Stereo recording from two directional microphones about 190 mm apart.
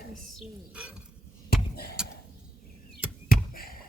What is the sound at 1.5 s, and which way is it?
Basketball bounce, 55° left (ahead or behind).